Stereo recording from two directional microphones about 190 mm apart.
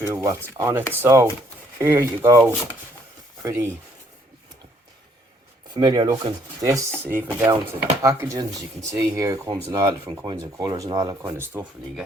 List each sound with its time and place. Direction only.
0.0 s speech: 15° right (ahead or behind)
5.7 s speech: 20° right (ahead or behind)